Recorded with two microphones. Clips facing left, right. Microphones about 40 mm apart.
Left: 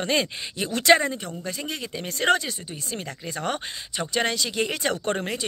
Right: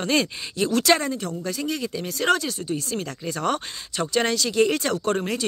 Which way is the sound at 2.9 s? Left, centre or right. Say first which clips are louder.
Right 4 dB; centre.